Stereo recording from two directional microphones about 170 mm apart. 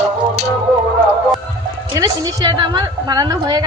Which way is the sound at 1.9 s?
25° right (ahead or behind).